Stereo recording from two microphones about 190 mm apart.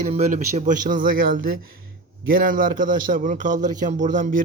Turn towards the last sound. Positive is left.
turn(degrees=-45)  # may be behind; listen again after turning